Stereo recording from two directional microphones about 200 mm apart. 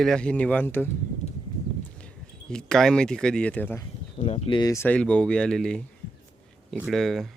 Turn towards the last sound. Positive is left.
turn(degrees=0)  # may be behind; listen again after turning